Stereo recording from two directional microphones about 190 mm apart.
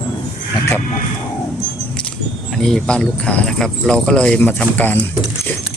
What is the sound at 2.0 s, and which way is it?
Speech, 5° left (ahead or behind).